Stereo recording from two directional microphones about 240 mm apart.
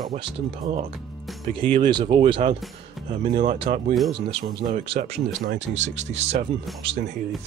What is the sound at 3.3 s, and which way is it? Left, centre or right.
Speech, right.